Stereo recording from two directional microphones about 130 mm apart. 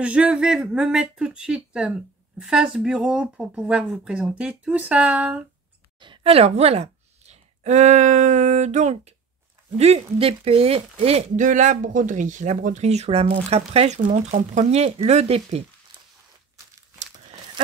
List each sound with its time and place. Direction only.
0.0 s speech: 10° right (ahead or behind)
5.9 s a sound: 40° right (ahead or behind)
6.3 s speech: 50° right (ahead or behind)
9.8 s speech: 50° right (ahead or behind)
11.3 s speech: 75° right (ahead or behind); by 15.6 s 55° right (ahead or behind)